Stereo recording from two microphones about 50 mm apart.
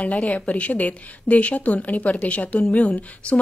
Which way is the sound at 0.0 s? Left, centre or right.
Left.